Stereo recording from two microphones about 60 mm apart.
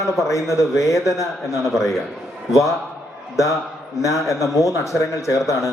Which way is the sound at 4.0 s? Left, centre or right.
Left.